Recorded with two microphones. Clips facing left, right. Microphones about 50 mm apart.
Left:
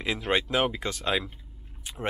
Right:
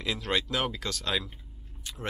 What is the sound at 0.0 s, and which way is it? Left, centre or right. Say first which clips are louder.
Speech: left 3 dB; left.